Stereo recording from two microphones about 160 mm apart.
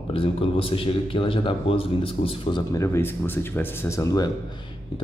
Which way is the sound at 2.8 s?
15° left (ahead or behind).